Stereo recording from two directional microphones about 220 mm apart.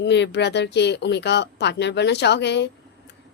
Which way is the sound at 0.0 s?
50° left (ahead or behind).